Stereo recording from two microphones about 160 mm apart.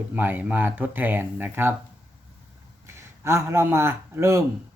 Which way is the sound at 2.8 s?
15° right (ahead or behind).